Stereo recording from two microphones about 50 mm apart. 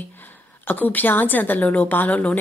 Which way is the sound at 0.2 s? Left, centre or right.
Left.